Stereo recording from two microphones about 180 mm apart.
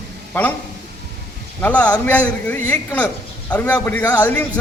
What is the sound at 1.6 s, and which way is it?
Speech, 5° left (ahead or behind).